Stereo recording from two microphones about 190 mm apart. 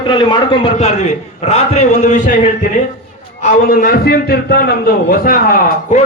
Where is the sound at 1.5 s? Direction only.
35° left (ahead or behind).